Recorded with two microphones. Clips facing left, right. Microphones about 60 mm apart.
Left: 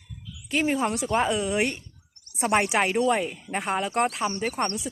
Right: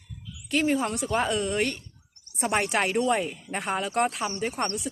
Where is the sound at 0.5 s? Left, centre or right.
Centre.